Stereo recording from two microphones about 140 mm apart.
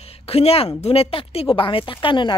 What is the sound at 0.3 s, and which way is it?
A woman's voice, 45° left (ahead or behind).